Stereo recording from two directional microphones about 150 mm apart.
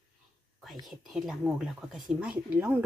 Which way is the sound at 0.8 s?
Centre (ahead or behind).